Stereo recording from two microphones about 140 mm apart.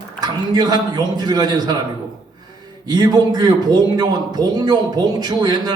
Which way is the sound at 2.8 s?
30° right (ahead or behind).